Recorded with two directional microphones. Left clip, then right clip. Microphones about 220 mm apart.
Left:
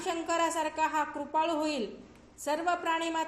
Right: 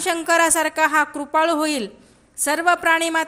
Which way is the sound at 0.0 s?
45° right (ahead or behind).